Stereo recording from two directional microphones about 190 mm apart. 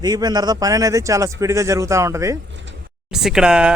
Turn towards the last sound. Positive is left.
turn(degrees=-5)  # may be behind; listen again after turning